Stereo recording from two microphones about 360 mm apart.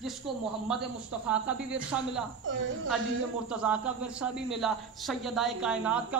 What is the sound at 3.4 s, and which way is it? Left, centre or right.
Speech, centre.